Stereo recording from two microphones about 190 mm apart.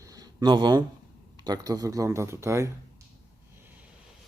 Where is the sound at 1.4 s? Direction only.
20° right (ahead or behind).